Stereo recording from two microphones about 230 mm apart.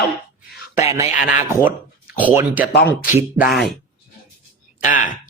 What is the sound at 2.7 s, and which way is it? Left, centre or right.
Speech, left.